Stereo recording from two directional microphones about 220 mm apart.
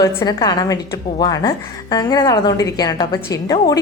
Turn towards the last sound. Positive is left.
turn(degrees=15)  # may be behind; listen again after turning